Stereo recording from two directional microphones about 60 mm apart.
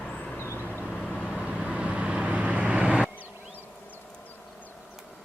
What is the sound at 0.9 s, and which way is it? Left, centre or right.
Vehicle, centre.